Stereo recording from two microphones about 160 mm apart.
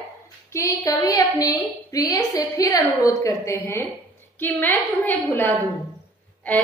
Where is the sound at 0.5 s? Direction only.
20° left (ahead or behind).